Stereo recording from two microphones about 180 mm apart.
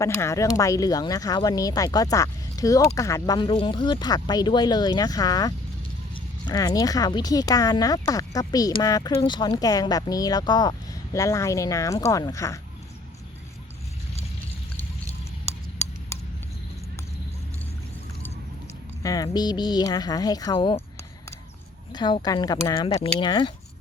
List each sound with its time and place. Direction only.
0.0 s speech: 15° left (ahead or behind)
19.0 s speech: 20° left (ahead or behind)
21.9 s speech: 25° left (ahead or behind)